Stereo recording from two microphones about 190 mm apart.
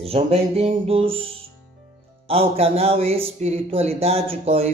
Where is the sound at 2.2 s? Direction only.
30° right (ahead or behind).